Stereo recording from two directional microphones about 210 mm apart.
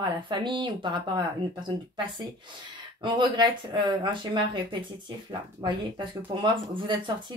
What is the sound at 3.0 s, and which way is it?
Speech, 20° right (ahead or behind).